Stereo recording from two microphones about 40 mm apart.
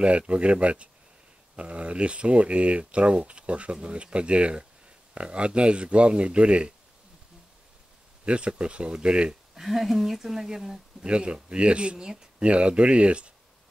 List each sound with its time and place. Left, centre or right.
0.3 s speech: right
8.3 s speech: right
9.6 s speech: centre
11.1 s speech: right